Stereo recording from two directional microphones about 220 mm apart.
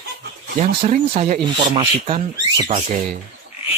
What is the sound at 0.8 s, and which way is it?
Speech, 30° right (ahead or behind).